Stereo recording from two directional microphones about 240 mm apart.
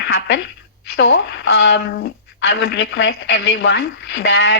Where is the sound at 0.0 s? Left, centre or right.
Left.